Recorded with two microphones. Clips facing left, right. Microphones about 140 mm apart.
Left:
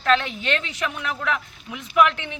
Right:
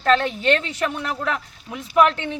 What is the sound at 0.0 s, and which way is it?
A woman's voice, 40° right (ahead or behind).